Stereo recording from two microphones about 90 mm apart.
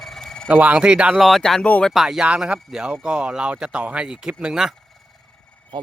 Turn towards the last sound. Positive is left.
turn(degrees=-10)  # may be behind; listen again after turning